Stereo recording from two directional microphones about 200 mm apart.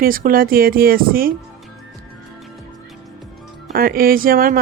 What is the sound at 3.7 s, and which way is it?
Speech, 45° right (ahead or behind).